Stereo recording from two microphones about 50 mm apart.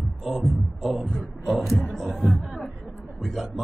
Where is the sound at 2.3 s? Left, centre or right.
Centre.